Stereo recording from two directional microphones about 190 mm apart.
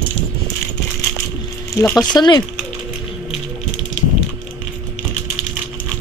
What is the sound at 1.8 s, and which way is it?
Speech, 20° left (ahead or behind).